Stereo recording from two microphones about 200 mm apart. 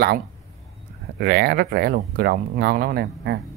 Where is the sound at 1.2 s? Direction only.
50° right (ahead or behind).